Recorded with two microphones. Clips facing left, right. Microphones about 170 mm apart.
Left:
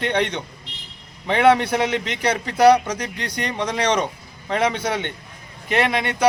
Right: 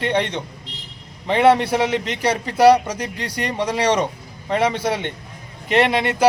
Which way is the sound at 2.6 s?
5° right (ahead or behind).